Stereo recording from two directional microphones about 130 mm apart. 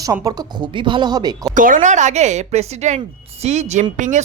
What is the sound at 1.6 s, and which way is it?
Speech, 90° right.